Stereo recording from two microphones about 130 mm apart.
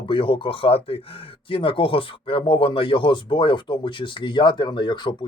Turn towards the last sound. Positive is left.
turn(degrees=35)  # may be behind; listen again after turning